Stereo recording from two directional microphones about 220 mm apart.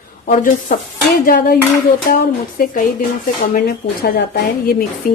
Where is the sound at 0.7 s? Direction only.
40° left (ahead or behind).